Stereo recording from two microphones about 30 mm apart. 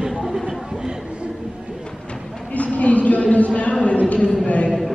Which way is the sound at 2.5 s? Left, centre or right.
Left.